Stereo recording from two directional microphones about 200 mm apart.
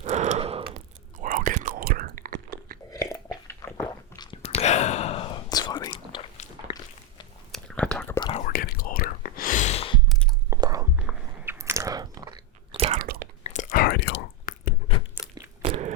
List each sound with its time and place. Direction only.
0.0 s gasp: 35° right (ahead or behind)
1.2 s chewing: 40° right (ahead or behind)
2.9 s biting: 15° left (ahead or behind)
3.4 s squish: 15° left (ahead or behind)
4.2 s whispering: 25° left (ahead or behind)
7.5 s whispering: 5° left (ahead or behind)
8.2 s whispering: 30° left (ahead or behind)
8.4 s whispering: 50° left (ahead or behind); by 10.0 s 30° left (ahead or behind)
10.1 s a sound: centre (ahead or behind)
10.5 s chewing: 15° right (ahead or behind)
10.9 s biting: 5° right (ahead or behind); by 12.8 s 20° right (ahead or behind)
12.8 s chewing: 25° right (ahead or behind)
13.4 s whispering: 35° left (ahead or behind); by 14.5 s 60° left (ahead or behind)
15.6 s biting: 25° right (ahead or behind)